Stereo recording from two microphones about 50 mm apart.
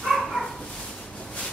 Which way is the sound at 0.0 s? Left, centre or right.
Centre.